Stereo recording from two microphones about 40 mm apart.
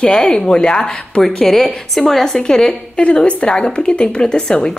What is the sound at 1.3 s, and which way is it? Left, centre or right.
A woman's voice, centre.